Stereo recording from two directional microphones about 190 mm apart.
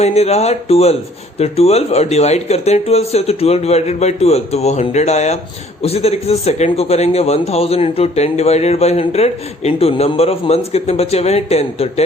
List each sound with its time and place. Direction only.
0.0 s a man's voice: 35° left (ahead or behind)